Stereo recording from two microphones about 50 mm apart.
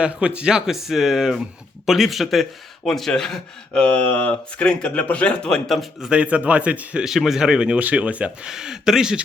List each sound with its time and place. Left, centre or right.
0.0 s speech: right; by 3.4 s centre
3.8 s speech: left
5.5 s speech: centre
6.0 s speech: right
7.0 s speech: centre
7.8 s speech: right
8.4 s speech: centre